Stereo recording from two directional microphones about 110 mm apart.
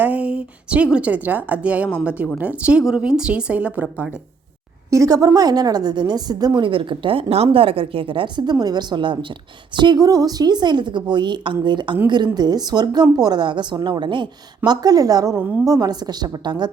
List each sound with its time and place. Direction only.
0.0 s a woman's voice: 15° right (ahead or behind)
4.9 s a woman's voice: 30° right (ahead or behind)
6.7 s a woman's voice: 50° right (ahead or behind)